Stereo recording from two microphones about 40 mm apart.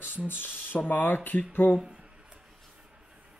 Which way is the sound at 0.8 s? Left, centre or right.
Left.